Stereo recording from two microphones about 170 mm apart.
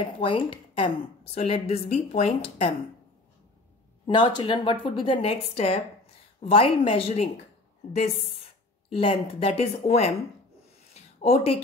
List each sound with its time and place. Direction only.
0.2 s a woman's voice: 30° left (ahead or behind)
4.0 s a woman's voice: 25° left (ahead or behind)
10.9 s a sound: 40° left (ahead or behind)